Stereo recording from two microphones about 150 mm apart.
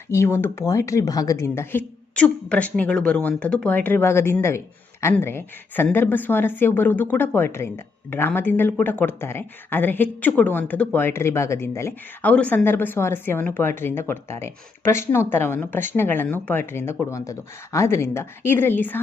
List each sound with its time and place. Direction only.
0.1 s speech: 15° left (ahead or behind)